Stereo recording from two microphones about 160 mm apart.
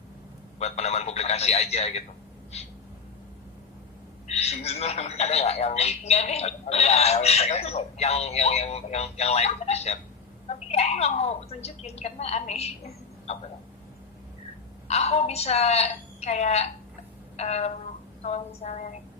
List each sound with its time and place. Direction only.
0.6 s a man's voice: 40° left (ahead or behind)
2.5 s owl: 40° left (ahead or behind)
4.3 s a man's voice: 40° left (ahead or behind)
14.8 s a man's voice: 40° left (ahead or behind)
17.3 s a sound: 40° left (ahead or behind)